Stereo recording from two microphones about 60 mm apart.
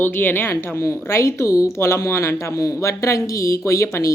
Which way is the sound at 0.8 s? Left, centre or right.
Left.